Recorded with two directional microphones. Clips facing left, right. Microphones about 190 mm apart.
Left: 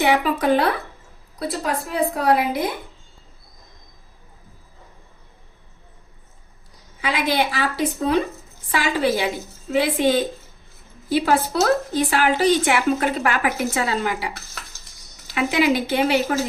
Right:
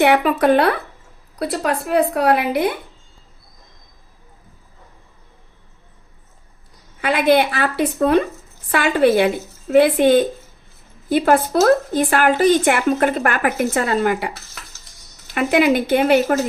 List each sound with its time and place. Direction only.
0.0 s a woman's voice: 60° right (ahead or behind)
7.0 s a woman's voice: 55° right (ahead or behind)
15.4 s a woman's voice: 55° right (ahead or behind)